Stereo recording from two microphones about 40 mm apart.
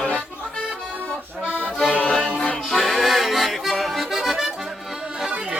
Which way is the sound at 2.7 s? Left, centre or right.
Centre.